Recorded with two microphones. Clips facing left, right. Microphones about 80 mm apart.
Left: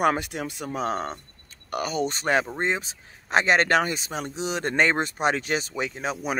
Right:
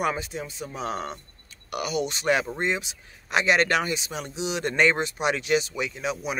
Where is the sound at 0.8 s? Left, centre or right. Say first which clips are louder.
Left 1 dB; left.